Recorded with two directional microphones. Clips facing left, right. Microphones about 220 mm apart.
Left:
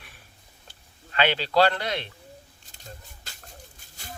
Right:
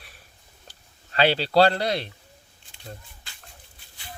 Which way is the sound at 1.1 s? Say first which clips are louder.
Right 3 dB; 35° right (ahead or behind).